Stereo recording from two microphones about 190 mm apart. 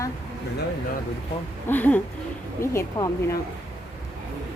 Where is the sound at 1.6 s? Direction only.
10° left (ahead or behind).